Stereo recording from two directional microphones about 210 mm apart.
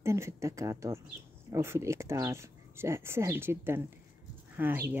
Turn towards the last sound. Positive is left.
turn(degrees=-10)  # may be behind; listen again after turning